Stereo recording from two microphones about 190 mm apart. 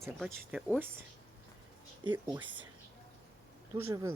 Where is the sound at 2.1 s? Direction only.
10° right (ahead or behind).